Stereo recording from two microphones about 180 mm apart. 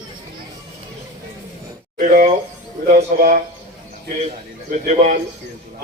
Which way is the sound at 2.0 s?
45° right (ahead or behind).